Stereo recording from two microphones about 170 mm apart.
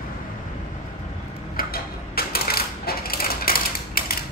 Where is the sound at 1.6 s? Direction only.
65° left (ahead or behind).